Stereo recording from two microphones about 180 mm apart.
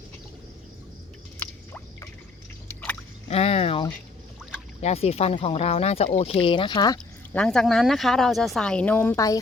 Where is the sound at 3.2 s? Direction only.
35° left (ahead or behind).